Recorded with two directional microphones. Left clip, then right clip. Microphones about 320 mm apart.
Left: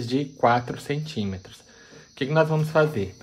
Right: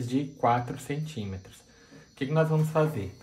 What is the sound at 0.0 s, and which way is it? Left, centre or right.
Speech, left.